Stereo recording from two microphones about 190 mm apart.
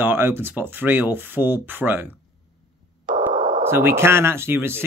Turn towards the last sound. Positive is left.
turn(degrees=-10)  # may be behind; listen again after turning